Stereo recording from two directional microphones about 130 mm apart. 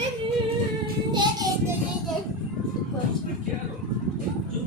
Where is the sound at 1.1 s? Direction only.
35° right (ahead or behind).